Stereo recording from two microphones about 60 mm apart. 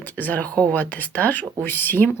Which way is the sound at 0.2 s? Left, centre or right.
Left.